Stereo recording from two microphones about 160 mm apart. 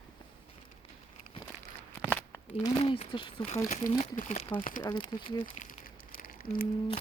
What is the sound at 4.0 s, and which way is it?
Speech, 50° left (ahead or behind).